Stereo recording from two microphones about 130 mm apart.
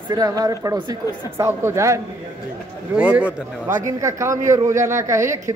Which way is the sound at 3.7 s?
25° right (ahead or behind).